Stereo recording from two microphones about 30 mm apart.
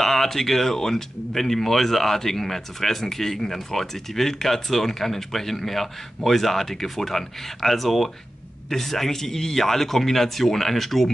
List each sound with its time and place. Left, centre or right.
0.0 s speech: centre